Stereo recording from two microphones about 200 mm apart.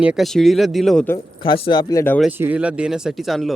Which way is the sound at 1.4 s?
25° left (ahead or behind).